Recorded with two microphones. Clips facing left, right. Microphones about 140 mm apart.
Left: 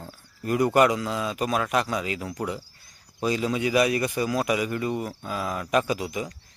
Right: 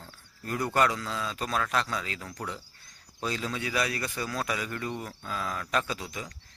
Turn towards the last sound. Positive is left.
turn(degrees=15)  # may be behind; listen again after turning